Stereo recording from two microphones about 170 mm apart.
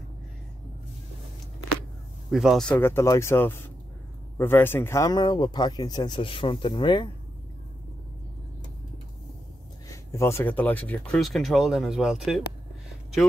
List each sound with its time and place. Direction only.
2.3 s speech: centre (ahead or behind); by 7.1 s 30° left (ahead or behind)
9.8 s speech: 15° left (ahead or behind); by 12.2 s 5° right (ahead or behind)